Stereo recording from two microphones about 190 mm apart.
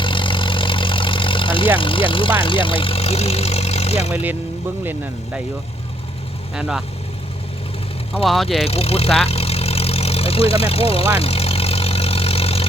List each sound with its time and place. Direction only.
0.0 s vehicle: 25° left (ahead or behind)
4.1 s speech: 10° right (ahead or behind)
6.5 s speech: 5° right (ahead or behind)
8.1 s speech: centre (ahead or behind)
8.6 s speech: 30° left (ahead or behind)
9.2 s vehicle: 30° left (ahead or behind)